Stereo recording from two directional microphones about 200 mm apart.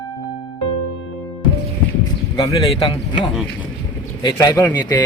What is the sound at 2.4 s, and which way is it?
Speech, 25° left (ahead or behind).